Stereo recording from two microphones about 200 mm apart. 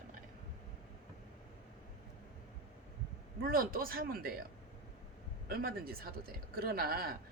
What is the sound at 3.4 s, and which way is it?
Speech, 45° right (ahead or behind).